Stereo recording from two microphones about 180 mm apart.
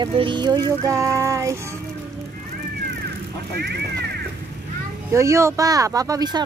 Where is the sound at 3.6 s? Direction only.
65° right (ahead or behind).